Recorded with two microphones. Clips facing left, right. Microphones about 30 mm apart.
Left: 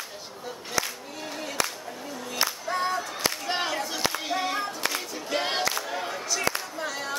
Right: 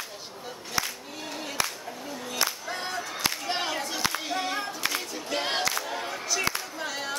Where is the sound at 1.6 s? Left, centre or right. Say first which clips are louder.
Left 1 dB; centre.